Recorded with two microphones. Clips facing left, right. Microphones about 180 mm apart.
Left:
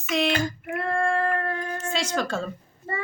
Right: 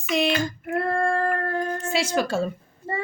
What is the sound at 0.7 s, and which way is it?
Female singing, 40° right (ahead or behind).